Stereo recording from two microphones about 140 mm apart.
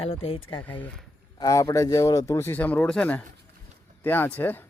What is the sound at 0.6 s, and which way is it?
Speech, 10° left (ahead or behind).